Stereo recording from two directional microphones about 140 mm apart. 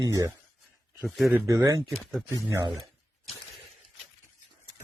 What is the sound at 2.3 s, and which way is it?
Speech, 20° right (ahead or behind).